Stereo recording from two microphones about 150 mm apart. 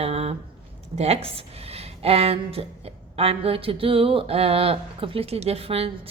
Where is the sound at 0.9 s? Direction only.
45° right (ahead or behind).